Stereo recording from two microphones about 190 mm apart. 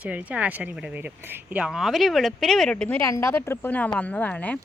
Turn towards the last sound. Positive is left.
turn(degrees=5)  # may be behind; listen again after turning